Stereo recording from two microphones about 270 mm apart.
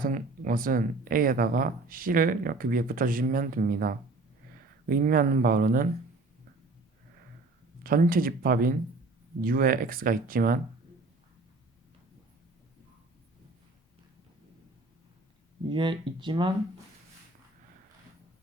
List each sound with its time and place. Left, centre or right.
0.0 s speech: right
7.9 s speech: right
15.7 s speech: centre